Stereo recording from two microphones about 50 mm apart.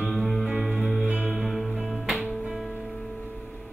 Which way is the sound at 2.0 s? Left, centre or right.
Right.